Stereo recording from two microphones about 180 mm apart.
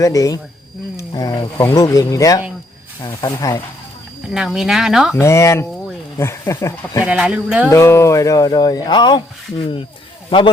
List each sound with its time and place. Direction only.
0.0 s speech: 20° left (ahead or behind)
4.3 s speech: centre (ahead or behind)
5.1 s speech: 15° left (ahead or behind)
7.0 s speech: 5° right (ahead or behind)
7.7 s speech: 15° left (ahead or behind)
10.2 s speech: 25° left (ahead or behind)